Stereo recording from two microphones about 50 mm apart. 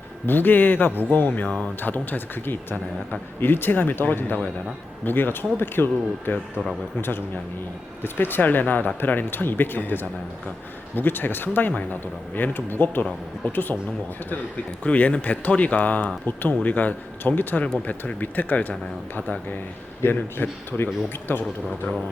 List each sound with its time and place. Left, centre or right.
0.3 s speech: left
1.5 s speech: centre
1.8 s speech: left
8.0 s speech: left
14.8 s speech: left
20.0 s speech: left
20.4 s speech: left